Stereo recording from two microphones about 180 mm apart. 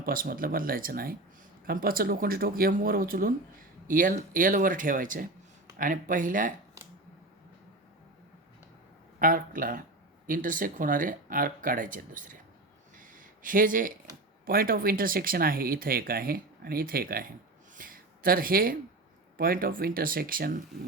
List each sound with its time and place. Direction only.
0.0 s speech: 50° right (ahead or behind)
9.1 s speech: 50° right (ahead or behind)
13.0 s a sound: 50° right (ahead or behind)
14.4 s speech: 55° right (ahead or behind)
17.7 s a sound: 50° right (ahead or behind)
19.4 s speech: 55° right (ahead or behind)